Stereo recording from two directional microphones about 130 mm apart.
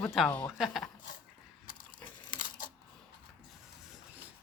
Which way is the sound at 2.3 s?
90° left.